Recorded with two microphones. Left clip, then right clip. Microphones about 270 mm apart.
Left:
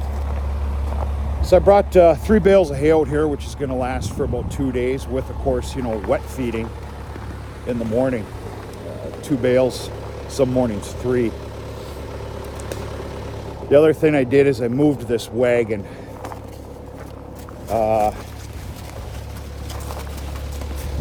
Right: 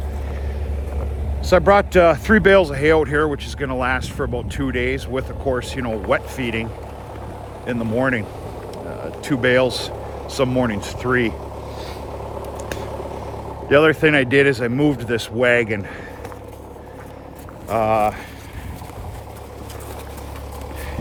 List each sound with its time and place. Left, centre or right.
1.5 s speech: right
7.7 s speech: right
9.2 s speech: right
12.5 s vehicle: right
13.7 s speech: right
17.7 s a sound: right